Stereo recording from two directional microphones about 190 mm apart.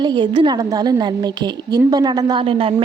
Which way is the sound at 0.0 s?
25° right (ahead or behind).